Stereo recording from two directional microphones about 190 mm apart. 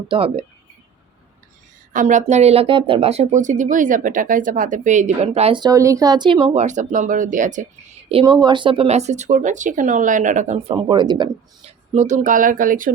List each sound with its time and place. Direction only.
0.1 s speech: 30° right (ahead or behind)
1.9 s speech: 40° right (ahead or behind)
8.2 s speech: 25° right (ahead or behind); by 10.8 s 40° right (ahead or behind)
10.8 s speech: 25° right (ahead or behind)
11.9 s speech: 40° right (ahead or behind)